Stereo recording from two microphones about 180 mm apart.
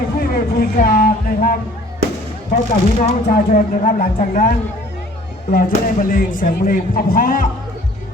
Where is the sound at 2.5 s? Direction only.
45° left (ahead or behind).